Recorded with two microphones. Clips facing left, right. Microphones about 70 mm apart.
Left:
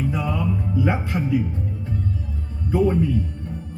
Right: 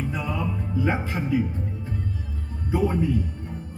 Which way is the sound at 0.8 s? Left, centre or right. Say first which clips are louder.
Left 1 dB; centre.